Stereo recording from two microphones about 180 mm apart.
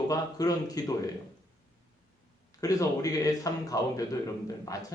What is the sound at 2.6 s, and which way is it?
A man's voice, 20° left (ahead or behind).